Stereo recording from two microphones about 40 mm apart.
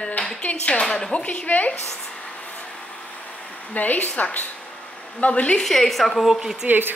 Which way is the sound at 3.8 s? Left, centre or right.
Left.